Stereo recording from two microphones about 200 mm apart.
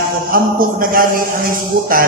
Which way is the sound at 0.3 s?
45° right (ahead or behind).